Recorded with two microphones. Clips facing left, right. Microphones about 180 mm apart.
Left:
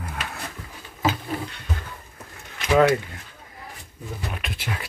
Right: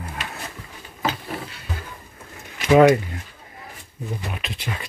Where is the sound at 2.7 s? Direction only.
15° right (ahead or behind).